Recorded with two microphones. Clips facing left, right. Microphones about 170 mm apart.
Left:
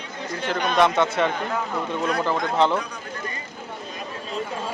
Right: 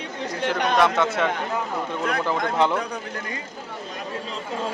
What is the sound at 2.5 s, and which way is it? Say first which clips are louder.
Speech: left 2 dB; 10° right (ahead or behind).